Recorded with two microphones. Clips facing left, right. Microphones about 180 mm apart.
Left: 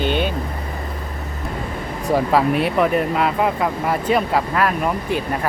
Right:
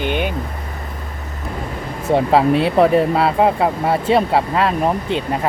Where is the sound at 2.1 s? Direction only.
25° right (ahead or behind).